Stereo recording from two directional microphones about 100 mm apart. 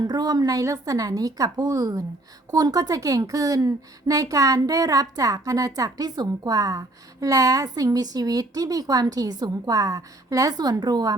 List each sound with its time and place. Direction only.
0.0 s a woman's voice: 40° right (ahead or behind)